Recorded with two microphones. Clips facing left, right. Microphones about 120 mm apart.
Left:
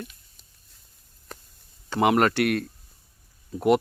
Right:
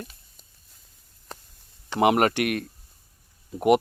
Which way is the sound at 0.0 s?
40° right (ahead or behind).